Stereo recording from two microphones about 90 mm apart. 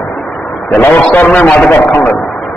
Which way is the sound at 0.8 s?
15° left (ahead or behind).